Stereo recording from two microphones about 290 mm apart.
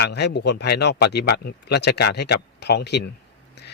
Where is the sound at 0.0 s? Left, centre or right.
Left.